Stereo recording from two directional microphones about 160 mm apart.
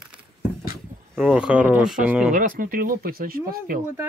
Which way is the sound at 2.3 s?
60° right (ahead or behind).